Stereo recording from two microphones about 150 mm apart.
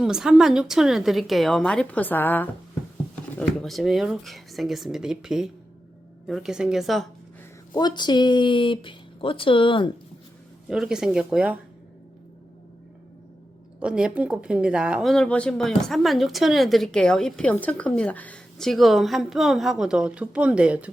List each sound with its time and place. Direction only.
0.0 s speech: 5° right (ahead or behind)
7.7 s speech: 30° left (ahead or behind)
10.7 s speech: 5° right (ahead or behind)
13.7 s speech: 5° right (ahead or behind)